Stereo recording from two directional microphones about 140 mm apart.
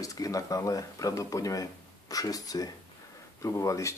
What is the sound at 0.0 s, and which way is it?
Speech, 25° left (ahead or behind).